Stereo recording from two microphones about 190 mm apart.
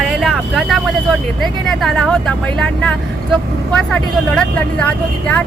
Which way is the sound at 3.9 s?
5° left (ahead or behind).